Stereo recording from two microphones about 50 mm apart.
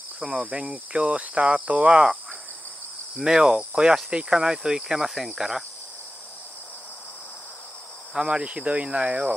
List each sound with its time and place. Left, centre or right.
0.2 s speech: centre
3.3 s speech: centre
8.1 s speech: centre